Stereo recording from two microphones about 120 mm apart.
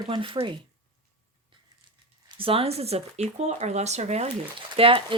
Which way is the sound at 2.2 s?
50° right (ahead or behind).